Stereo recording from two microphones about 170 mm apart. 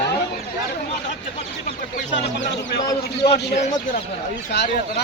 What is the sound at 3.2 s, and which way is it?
A man's voice, 70° left (ahead or behind).